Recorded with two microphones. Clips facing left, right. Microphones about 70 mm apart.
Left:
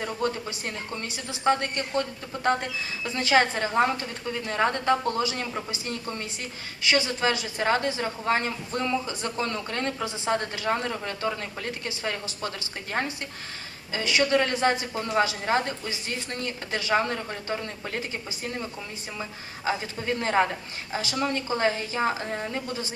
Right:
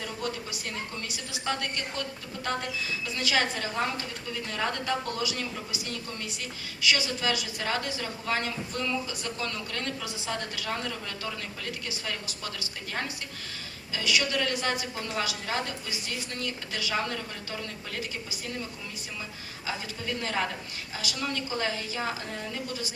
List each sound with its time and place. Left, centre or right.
0.0 s a woman's voice: left
13.9 s a woman's voice: left